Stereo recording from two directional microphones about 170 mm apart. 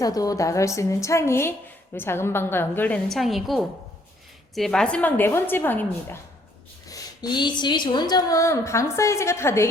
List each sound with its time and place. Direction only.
0.0 s a woman's voice: 20° left (ahead or behind)
6.8 s a woman's voice: 20° left (ahead or behind)